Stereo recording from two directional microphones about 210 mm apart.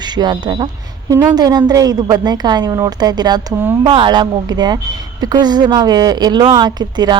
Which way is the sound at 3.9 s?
25° right (ahead or behind).